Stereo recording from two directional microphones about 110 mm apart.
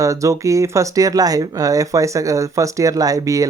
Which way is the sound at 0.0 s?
30° right (ahead or behind).